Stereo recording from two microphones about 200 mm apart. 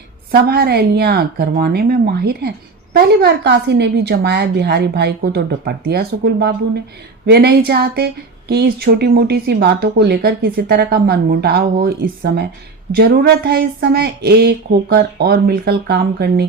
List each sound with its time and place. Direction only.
0.3 s a woman's voice: 50° right (ahead or behind)